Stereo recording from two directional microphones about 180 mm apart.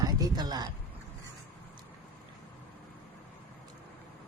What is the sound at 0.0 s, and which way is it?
Speech, 20° right (ahead or behind).